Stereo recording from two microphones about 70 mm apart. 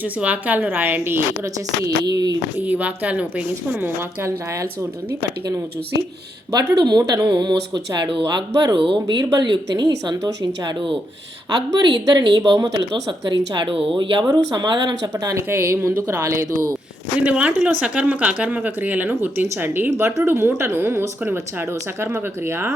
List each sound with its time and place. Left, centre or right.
0.0 s speech: right
1.5 s speech: right
2.6 s speech: right
6.7 s speech: right
11.7 s speech: right
15.1 s speech: right
15.4 s speech: right
17.2 s speech: centre; by 22.7 s right